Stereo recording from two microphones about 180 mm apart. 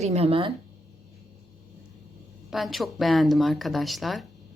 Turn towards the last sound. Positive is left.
turn(degrees=0)  # may be behind; listen again after turning